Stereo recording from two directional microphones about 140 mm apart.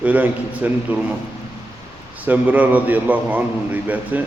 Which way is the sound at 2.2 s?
10° right (ahead or behind).